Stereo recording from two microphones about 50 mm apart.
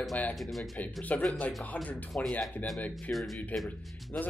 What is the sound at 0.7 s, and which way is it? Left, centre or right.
Speech, left.